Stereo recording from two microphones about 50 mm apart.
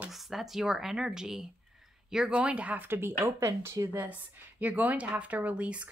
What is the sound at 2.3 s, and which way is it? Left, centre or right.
Speech, right.